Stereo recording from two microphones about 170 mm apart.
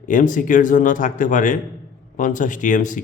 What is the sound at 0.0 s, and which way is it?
Speech, 50° left (ahead or behind).